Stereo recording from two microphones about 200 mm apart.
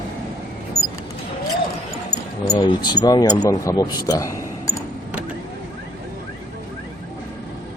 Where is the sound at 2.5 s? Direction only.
20° left (ahead or behind).